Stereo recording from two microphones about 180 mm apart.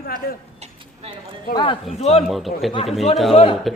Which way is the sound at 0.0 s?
55° left (ahead or behind).